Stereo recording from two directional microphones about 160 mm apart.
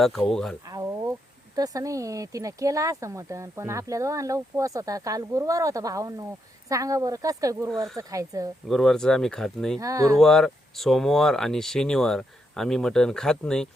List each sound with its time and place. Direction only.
0.0 s speech: centre (ahead or behind)
0.6 s a sound: 20° right (ahead or behind)
1.5 s speech: 20° right (ahead or behind)
8.6 s speech: centre (ahead or behind)
9.7 s speech: 20° right (ahead or behind)
10.2 s speech: 5° left (ahead or behind)